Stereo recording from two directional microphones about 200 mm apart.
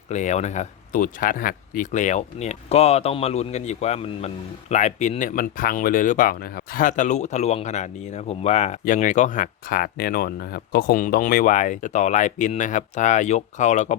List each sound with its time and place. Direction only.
0.1 s speech: 35° left (ahead or behind)